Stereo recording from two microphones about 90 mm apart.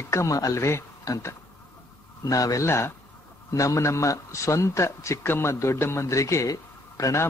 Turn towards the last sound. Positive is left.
turn(degrees=35)  # may be behind; listen again after turning